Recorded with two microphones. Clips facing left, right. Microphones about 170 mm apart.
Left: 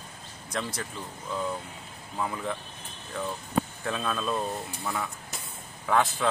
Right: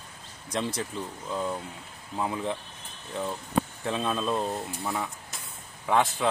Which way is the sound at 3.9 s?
20° right (ahead or behind).